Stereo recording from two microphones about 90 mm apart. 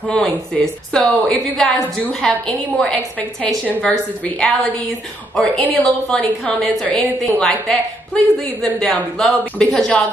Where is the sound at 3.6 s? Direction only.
15° left (ahead or behind).